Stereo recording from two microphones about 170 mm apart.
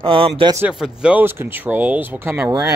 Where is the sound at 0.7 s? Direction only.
5° right (ahead or behind).